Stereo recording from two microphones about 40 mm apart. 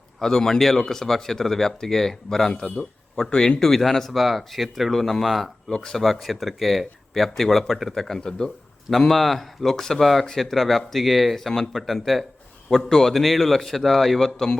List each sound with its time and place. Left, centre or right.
0.2 s speech: centre
3.8 s speech: centre
5.7 s speech: centre
6.1 s speech: centre
8.2 s speech: centre
8.9 s speech: centre
12.7 s speech: centre